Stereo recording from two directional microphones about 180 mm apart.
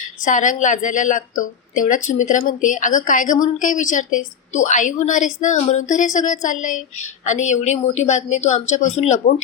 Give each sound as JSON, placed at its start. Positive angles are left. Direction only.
{"t": 0.0, "sound": "a woman's voice", "side_deg": 45}